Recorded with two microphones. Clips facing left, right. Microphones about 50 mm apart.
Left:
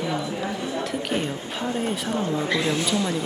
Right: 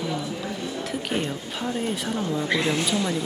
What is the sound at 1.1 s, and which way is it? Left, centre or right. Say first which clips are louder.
Speech: left 1 dB; centre.